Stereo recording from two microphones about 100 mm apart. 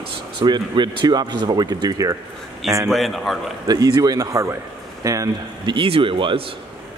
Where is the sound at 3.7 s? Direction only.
40° right (ahead or behind).